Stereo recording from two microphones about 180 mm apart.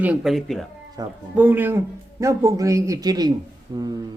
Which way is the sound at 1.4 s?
10° right (ahead or behind).